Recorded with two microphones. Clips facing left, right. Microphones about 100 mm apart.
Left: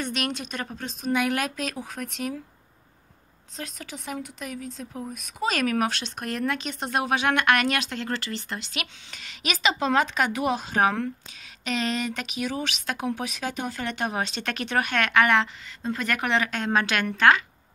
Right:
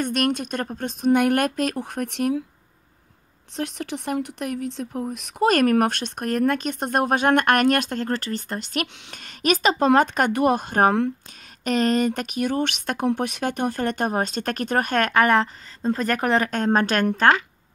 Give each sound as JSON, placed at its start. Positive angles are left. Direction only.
{"t": 0.0, "sound": "speech", "side_deg": -50}
{"t": 3.5, "sound": "speech", "side_deg": -70}